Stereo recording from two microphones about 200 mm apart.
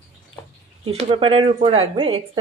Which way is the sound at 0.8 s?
25° right (ahead or behind).